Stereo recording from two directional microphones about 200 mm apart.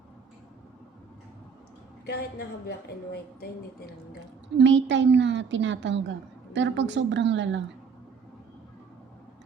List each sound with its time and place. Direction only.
2.0 s a woman's voice: 55° left (ahead or behind)
4.5 s a woman's voice: 65° right (ahead or behind)